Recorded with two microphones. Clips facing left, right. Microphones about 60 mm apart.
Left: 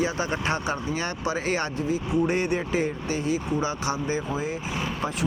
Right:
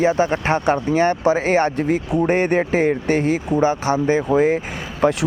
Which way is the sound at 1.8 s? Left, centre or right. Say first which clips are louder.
Right 6 dB; right.